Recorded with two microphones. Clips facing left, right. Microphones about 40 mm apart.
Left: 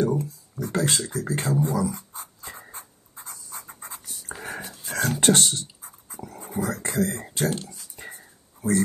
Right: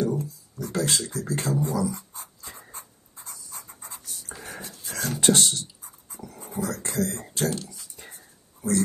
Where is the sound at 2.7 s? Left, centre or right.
Left.